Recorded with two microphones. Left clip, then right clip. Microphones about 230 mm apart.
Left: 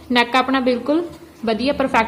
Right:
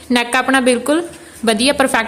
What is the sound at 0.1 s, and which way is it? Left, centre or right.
A woman's voice, right.